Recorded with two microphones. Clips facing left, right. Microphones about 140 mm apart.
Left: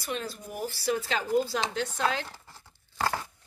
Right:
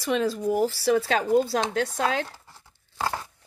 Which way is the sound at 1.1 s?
60° right (ahead or behind).